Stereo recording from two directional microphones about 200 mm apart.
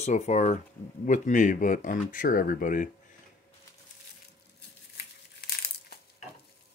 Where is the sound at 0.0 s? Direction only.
35° left (ahead or behind).